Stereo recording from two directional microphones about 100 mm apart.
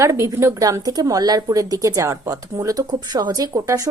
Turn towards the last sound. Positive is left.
turn(degrees=-35)  # may be behind; listen again after turning